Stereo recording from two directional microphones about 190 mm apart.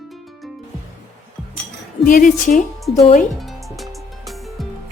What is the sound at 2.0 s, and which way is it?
Speech, 45° left (ahead or behind).